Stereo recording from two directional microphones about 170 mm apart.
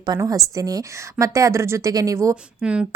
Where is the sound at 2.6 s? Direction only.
5° right (ahead or behind).